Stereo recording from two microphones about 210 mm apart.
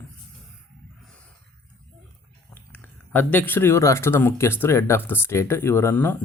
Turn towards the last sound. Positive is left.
turn(degrees=10)  # may be behind; listen again after turning